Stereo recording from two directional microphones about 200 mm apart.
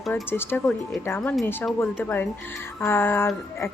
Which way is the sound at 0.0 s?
10° left (ahead or behind).